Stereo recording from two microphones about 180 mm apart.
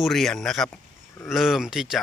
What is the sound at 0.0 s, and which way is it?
Speech, centre (ahead or behind).